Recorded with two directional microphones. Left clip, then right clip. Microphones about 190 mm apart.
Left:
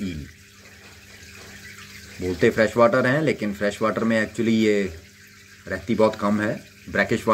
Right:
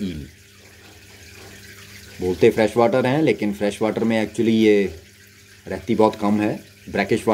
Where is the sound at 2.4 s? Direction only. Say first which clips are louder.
Right 1 dB; 10° right (ahead or behind).